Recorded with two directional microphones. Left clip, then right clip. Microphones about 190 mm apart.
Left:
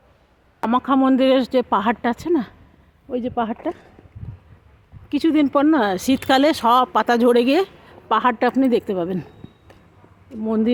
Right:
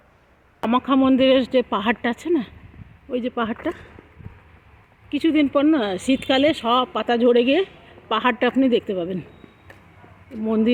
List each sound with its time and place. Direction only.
0.6 s speech: 5° left (ahead or behind)
5.1 s speech: 15° left (ahead or behind)
8.1 s speech: 10° left (ahead or behind)
10.3 s speech: 10° left (ahead or behind)